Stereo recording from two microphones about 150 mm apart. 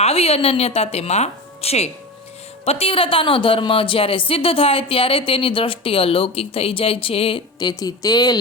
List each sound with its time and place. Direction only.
0.0 s a woman's voice: 40° left (ahead or behind); by 8.4 s 25° left (ahead or behind)